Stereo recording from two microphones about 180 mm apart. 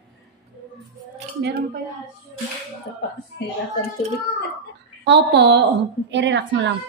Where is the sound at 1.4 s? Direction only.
65° right (ahead or behind).